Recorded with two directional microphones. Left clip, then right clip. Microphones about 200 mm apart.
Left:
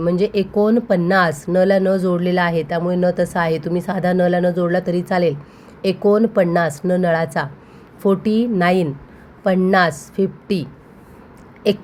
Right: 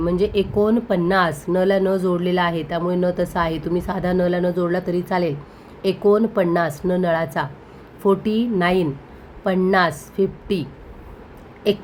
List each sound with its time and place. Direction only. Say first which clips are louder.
0.0 s speech: left 2 dB; 25° left (ahead or behind)